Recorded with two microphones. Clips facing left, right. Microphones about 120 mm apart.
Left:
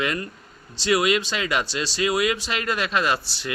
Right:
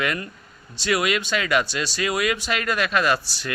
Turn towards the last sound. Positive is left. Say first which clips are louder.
# right 2 dB
turn(degrees=25)  # may be behind; listen again after turning